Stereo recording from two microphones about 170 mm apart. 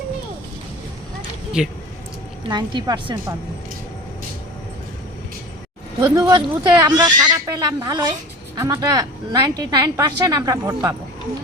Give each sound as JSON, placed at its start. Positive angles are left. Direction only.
{"t": 1.6, "sound": "speech", "side_deg": -5}
{"t": 2.5, "sound": "a woman's voice", "side_deg": -25}
{"t": 6.0, "sound": "a woman's voice", "side_deg": -25}